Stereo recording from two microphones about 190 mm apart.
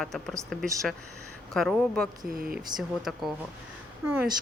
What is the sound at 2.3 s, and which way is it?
Speech, 50° right (ahead or behind).